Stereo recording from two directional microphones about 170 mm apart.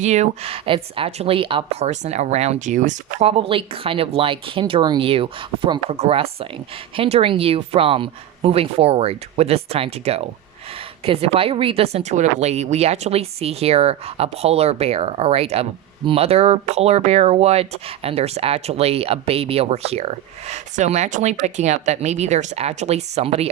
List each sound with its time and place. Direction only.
0.0 s speech: 40° right (ahead or behind)